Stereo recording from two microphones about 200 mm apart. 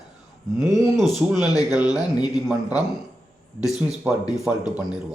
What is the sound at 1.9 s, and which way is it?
Speech, 20° left (ahead or behind).